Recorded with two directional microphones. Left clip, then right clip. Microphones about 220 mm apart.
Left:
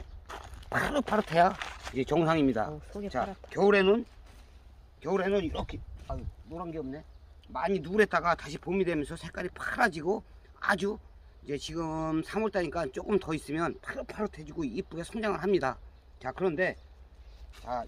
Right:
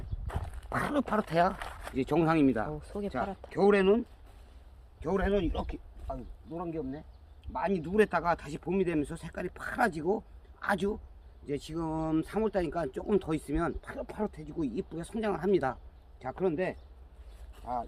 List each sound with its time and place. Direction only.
0.3 s dog: 10° right (ahead or behind)
0.7 s speech: 10° left (ahead or behind)
1.5 s a sound: 20° right (ahead or behind)
2.0 s speech: 25° left (ahead or behind)
2.7 s speech: 5° right (ahead or behind)
3.5 s speech: 5° left (ahead or behind)